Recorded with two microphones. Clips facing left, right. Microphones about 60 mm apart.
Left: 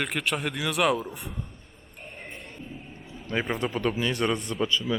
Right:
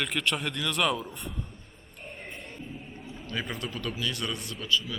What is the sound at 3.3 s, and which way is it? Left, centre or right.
Speech, left.